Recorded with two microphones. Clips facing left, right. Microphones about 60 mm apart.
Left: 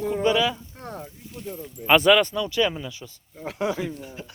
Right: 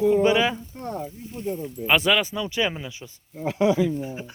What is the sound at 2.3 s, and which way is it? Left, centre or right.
Speech, centre.